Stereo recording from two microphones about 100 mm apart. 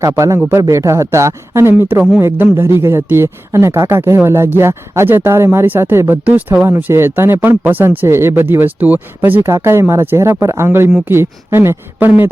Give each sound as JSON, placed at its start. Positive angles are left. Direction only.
{"t": 0.3, "sound": "a man's voice", "side_deg": -20}